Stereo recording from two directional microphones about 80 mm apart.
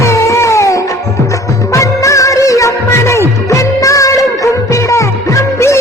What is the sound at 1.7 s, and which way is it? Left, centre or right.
Music, left.